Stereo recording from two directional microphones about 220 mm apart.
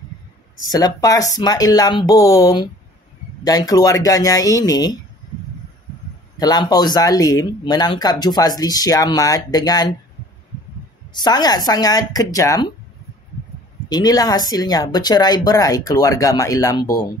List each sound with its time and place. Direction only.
0.7 s speech: 15° left (ahead or behind)
6.3 s speech: 15° left (ahead or behind)
11.1 s speech: 20° left (ahead or behind)
13.8 s speech: 15° left (ahead or behind)